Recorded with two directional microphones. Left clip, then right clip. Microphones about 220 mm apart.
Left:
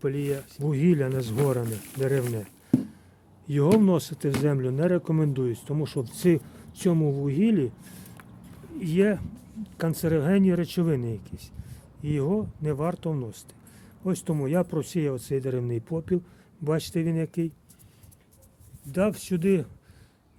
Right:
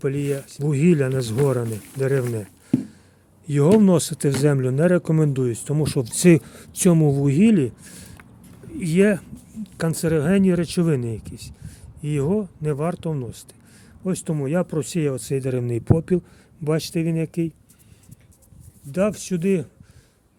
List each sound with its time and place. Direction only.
0.0 s speech: 20° right (ahead or behind)
18.9 s speech: 10° right (ahead or behind)